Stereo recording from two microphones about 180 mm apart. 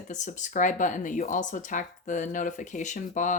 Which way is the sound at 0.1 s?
45° left (ahead or behind).